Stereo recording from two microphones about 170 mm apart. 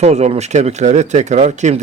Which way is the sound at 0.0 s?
40° right (ahead or behind).